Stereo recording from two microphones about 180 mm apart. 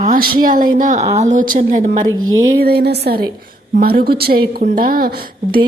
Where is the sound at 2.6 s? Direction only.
60° right (ahead or behind).